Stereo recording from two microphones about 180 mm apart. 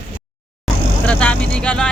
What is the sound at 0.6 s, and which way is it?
Vehicle, 5° left (ahead or behind).